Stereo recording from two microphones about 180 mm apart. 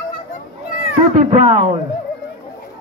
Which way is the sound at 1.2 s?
40° right (ahead or behind).